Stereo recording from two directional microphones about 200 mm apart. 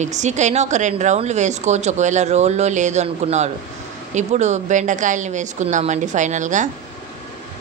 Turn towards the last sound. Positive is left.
turn(degrees=-40)  # may be behind; listen again after turning